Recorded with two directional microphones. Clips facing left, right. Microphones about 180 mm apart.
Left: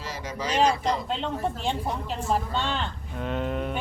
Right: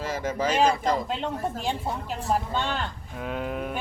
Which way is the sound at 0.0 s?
50° right (ahead or behind).